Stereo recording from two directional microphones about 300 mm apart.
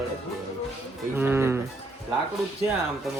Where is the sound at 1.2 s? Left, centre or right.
Centre.